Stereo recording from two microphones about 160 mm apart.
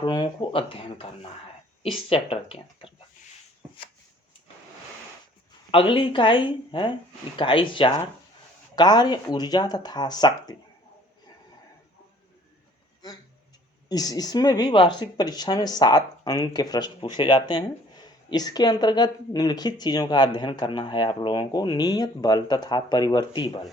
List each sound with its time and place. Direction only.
0.0 s speech: 30° left (ahead or behind)
5.7 s speech: 35° left (ahead or behind)
13.8 s speech: 25° left (ahead or behind)